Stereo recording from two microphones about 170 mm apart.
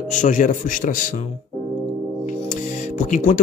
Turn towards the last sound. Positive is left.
turn(degrees=50)  # may be behind; listen again after turning